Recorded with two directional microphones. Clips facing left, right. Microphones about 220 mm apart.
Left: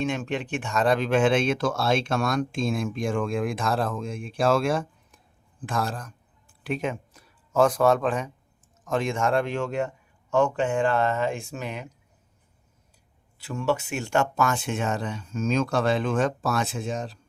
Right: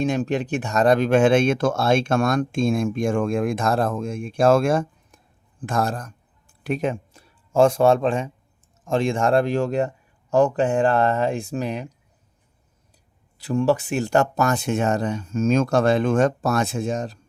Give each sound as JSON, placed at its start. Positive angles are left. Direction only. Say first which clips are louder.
{"t": 0.0, "sound": "a man's voice", "louder": "right 5 dB", "side_deg": -40}
{"t": 13.4, "sound": "speech", "louder": "right 6 dB", "side_deg": -35}